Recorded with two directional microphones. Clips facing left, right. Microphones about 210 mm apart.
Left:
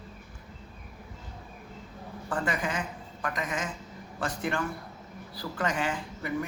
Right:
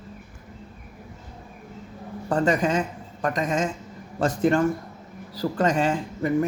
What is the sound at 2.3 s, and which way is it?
A man's voice, 40° right (ahead or behind).